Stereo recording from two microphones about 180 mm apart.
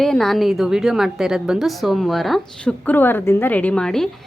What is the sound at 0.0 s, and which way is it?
A woman's voice, centre (ahead or behind).